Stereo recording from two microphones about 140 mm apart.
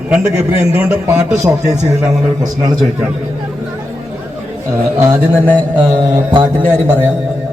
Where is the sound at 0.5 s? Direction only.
45° left (ahead or behind).